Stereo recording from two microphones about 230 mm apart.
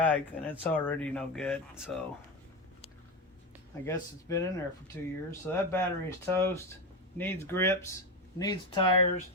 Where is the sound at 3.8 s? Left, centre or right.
Centre.